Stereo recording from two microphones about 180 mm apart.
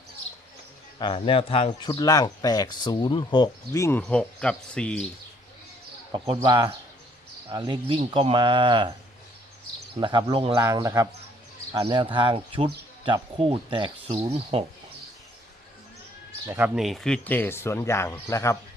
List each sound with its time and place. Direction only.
0.9 s speech: 25° left (ahead or behind); by 5.0 s 5° left (ahead or behind)
6.1 s speech: 25° right (ahead or behind)
10.0 s speech: 25° right (ahead or behind)
16.5 s speech: 10° right (ahead or behind); by 18.5 s 15° left (ahead or behind)